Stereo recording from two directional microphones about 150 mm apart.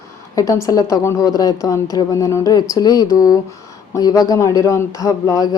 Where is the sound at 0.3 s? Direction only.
20° left (ahead or behind).